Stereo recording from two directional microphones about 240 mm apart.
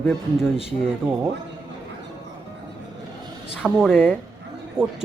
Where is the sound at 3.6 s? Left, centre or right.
Centre.